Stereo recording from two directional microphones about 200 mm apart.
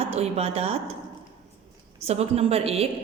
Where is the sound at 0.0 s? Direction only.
30° right (ahead or behind).